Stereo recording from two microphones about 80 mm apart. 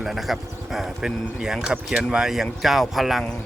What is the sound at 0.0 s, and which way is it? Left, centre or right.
Speech, centre.